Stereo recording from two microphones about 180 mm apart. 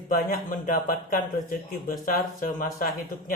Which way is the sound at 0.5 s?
50° left (ahead or behind).